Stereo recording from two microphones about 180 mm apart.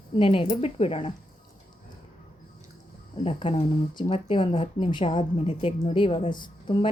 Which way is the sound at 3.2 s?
30° left (ahead or behind).